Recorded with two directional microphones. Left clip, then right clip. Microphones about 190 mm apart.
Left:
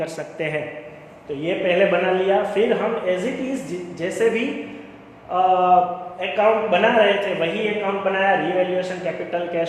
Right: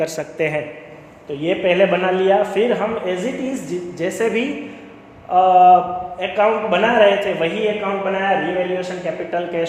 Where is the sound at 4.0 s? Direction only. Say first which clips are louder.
Even; 45° right (ahead or behind).